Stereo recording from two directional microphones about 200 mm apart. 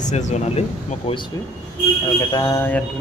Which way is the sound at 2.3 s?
15° left (ahead or behind).